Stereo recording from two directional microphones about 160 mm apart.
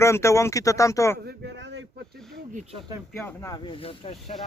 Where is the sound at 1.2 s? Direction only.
85° right.